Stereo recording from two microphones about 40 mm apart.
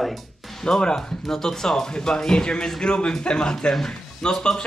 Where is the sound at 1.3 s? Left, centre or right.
Centre.